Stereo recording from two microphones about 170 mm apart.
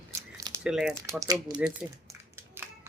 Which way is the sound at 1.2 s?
20° right (ahead or behind).